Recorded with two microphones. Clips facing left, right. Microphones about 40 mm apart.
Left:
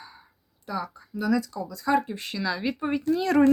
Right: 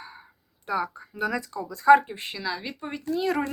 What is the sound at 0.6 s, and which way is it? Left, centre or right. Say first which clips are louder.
Speech: right 4 dB; right.